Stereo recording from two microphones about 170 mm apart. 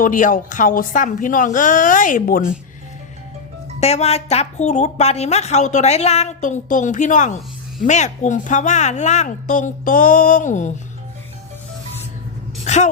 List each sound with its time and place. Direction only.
0.0 s a woman's voice: 50° left (ahead or behind)
3.8 s a woman's voice: 40° left (ahead or behind)
12.6 s speech: 40° left (ahead or behind)